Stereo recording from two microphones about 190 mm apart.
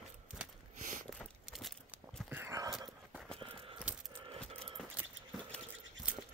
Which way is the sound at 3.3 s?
25° right (ahead or behind).